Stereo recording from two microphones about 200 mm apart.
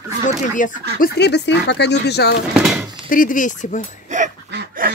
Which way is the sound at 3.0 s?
40° left (ahead or behind).